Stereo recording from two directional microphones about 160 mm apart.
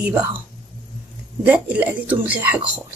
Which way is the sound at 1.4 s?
10° right (ahead or behind).